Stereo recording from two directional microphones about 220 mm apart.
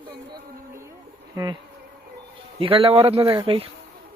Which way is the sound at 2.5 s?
25° right (ahead or behind).